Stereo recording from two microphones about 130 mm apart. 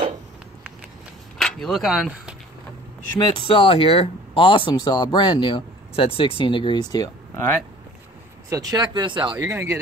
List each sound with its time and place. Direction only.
1.4 s speech: centre (ahead or behind)
3.3 s speech: 40° left (ahead or behind)
8.5 s speech: 25° right (ahead or behind)
9.3 s speech: 20° right (ahead or behind)